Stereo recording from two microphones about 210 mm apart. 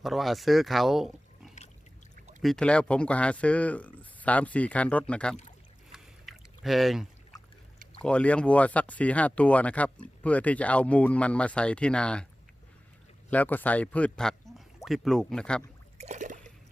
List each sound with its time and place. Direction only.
0.0 s speech: centre (ahead or behind)
5.9 s rowboat: centre (ahead or behind)
8.0 s speech: 5° left (ahead or behind)
13.3 s speech: 10° left (ahead or behind)
16.0 s a sound: 35° right (ahead or behind)